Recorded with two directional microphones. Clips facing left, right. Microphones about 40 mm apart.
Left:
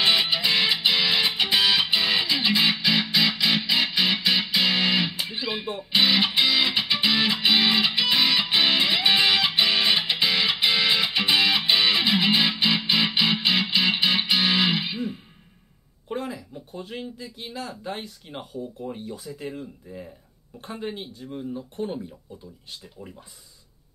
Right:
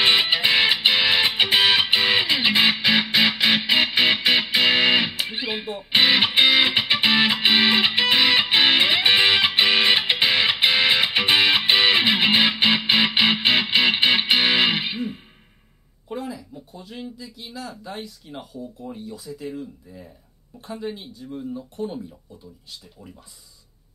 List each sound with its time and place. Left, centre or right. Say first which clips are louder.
0.0 s music: right 3 dB; right
16.1 s a sound: even; left
18.9 s speech: even; left
20.6 s speech: right 1 dB; left